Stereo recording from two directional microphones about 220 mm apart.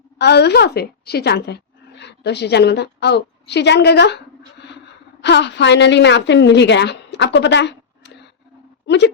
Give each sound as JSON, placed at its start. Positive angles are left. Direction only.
{"t": 0.2, "sound": "a woman's voice", "side_deg": 50}
{"t": 5.2, "sound": "a woman's voice", "side_deg": 50}